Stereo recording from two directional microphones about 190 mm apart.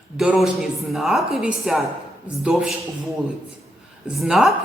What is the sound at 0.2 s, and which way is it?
A woman's voice, centre (ahead or behind).